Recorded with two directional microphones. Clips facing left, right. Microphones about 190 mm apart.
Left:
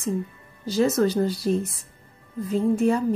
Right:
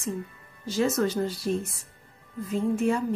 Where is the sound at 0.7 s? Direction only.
35° left (ahead or behind).